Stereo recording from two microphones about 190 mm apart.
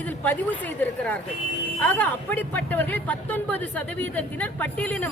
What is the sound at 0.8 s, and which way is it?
Speech, 10° left (ahead or behind).